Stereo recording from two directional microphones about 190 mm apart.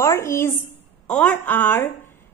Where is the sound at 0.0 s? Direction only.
15° left (ahead or behind).